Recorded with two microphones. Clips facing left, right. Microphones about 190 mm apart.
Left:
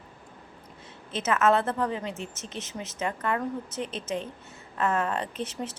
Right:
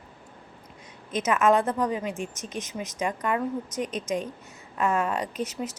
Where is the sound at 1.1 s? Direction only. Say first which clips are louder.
Right 2 dB; 15° right (ahead or behind).